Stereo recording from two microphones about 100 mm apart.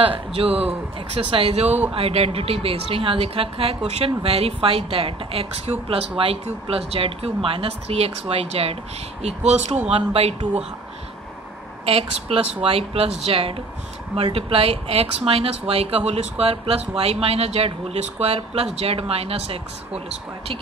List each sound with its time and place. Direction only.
0.0 s a woman's voice: 70° right (ahead or behind); by 10.6 s 85° right
11.8 s a woman's voice: 80° right